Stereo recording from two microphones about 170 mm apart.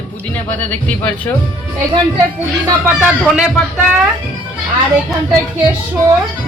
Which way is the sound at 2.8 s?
5° right (ahead or behind).